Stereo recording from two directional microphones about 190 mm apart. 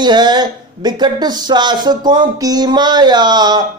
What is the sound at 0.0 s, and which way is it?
Speech, 20° right (ahead or behind).